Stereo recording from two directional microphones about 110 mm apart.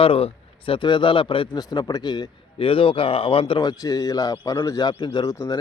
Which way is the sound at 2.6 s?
55° left (ahead or behind).